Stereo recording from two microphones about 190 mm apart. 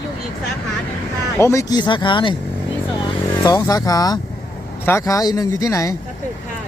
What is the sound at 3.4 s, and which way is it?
Speech, 20° left (ahead or behind).